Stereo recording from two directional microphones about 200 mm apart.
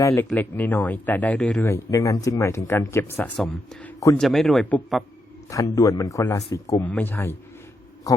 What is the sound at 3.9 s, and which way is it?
Speech, 15° left (ahead or behind).